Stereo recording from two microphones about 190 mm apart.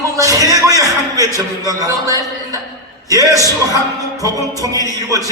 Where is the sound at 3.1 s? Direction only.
20° right (ahead or behind).